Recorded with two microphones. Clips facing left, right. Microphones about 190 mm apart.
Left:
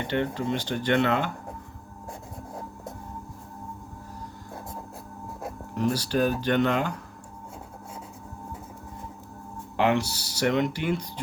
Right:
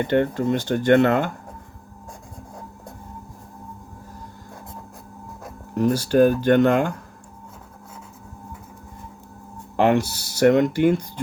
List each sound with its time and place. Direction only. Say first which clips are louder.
0.0 s speech: right 7 dB; 50° right (ahead or behind)
5.7 s speech: right 8 dB; 50° right (ahead or behind)
9.7 s speech: right 5 dB; 45° right (ahead or behind)